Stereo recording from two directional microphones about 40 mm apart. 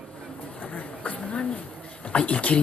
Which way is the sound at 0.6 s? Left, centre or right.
Left.